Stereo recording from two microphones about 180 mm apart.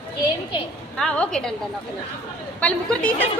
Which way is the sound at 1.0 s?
5° left (ahead or behind).